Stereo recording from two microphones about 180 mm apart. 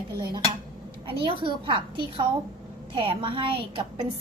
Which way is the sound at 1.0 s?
30° right (ahead or behind).